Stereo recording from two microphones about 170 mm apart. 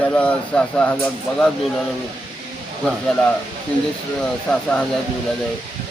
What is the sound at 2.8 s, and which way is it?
Speech, 5° left (ahead or behind).